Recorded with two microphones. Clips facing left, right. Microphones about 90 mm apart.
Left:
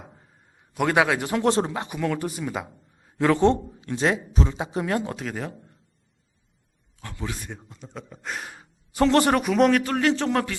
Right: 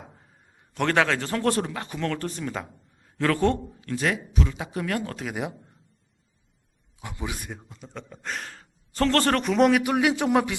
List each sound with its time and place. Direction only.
0.7 s a man's voice: 10° left (ahead or behind)
2.0 s a man's voice: 10° left (ahead or behind)
3.2 s a man's voice: 20° left (ahead or behind)
5.1 s a man's voice: 10° right (ahead or behind)
7.0 s a man's voice: 15° right (ahead or behind)